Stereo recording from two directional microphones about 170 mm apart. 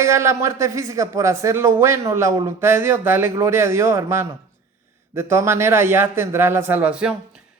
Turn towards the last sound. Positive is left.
turn(degrees=-5)  # may be behind; listen again after turning